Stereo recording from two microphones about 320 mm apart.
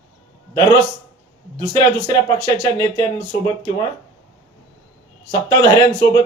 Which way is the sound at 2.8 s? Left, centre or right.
Centre.